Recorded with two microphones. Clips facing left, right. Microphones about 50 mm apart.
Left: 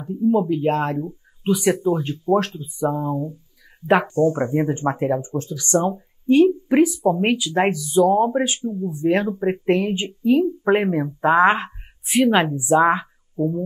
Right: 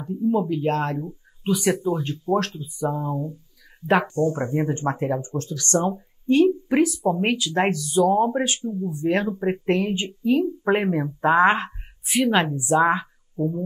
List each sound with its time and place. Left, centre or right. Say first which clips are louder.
0.0 s speech: left 3 dB; centre; by 2.9 s left
2.9 s speech: left 3 dB; centre